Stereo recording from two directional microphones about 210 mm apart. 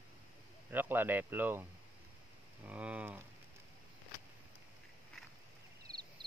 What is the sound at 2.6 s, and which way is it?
Speech, 5° right (ahead or behind).